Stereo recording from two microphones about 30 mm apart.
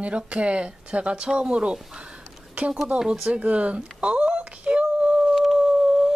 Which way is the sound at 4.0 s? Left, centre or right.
Right.